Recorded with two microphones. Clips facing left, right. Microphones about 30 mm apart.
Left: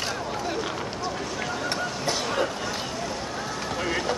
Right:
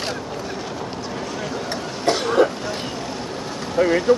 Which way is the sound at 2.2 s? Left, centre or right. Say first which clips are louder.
Right 8 dB; centre.